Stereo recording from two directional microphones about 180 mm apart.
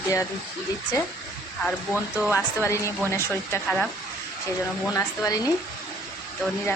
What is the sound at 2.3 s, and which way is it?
Speech, 15° left (ahead or behind).